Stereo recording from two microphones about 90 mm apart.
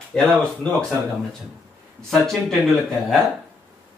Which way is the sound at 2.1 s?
5° left (ahead or behind).